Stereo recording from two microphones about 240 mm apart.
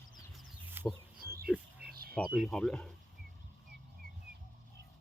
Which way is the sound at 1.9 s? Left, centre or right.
Right.